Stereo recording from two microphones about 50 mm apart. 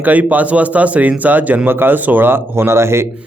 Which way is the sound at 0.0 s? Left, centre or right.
Right.